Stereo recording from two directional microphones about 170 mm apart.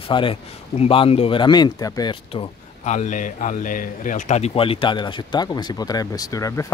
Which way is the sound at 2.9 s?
45° left (ahead or behind).